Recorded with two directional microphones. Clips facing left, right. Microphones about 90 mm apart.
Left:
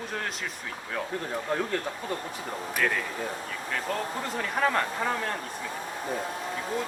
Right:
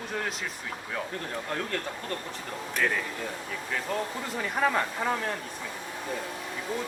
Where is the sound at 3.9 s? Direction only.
5° right (ahead or behind).